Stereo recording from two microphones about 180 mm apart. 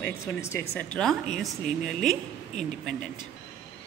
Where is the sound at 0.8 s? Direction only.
5° left (ahead or behind).